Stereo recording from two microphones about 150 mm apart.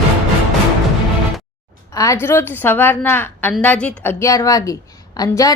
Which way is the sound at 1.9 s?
20° left (ahead or behind).